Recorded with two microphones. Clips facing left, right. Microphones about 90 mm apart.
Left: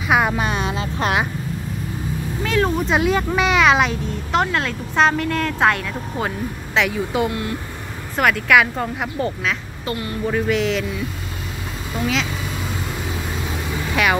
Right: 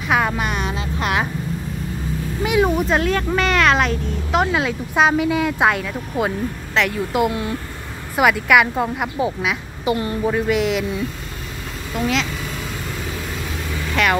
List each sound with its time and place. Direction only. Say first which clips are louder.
0.1 s a sound: left 1 dB; 5° left (ahead or behind)
0.4 s vehicle: left 1 dB; 25° left (ahead or behind)
2.4 s speech: right 2 dB; 10° right (ahead or behind)
2.9 s speech: even; 10° left (ahead or behind)
7.2 s speech: right 2 dB; 20° right (ahead or behind)
8.2 s a woman's voice: right 1 dB; 5° right (ahead or behind)
11.9 s speech: right 1 dB; centre (ahead or behind)
14.0 s speech: even; 5° left (ahead or behind)